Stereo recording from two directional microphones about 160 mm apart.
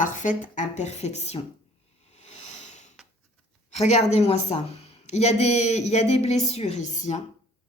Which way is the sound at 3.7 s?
45° left (ahead or behind).